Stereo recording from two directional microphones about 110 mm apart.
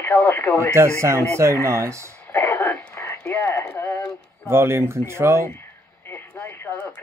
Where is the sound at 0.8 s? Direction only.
25° right (ahead or behind).